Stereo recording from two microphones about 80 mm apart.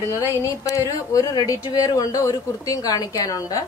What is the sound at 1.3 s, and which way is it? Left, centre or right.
A woman's voice, left.